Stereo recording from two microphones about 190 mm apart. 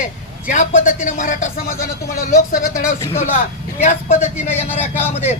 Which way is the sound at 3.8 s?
35° left (ahead or behind).